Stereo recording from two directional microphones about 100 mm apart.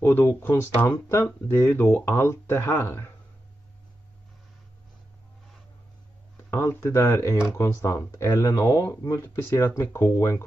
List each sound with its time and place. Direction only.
0.0 s speech: 20° left (ahead or behind)
6.5 s speech: 25° left (ahead or behind)